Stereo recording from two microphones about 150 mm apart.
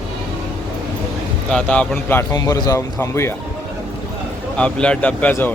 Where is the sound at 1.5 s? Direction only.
5° left (ahead or behind).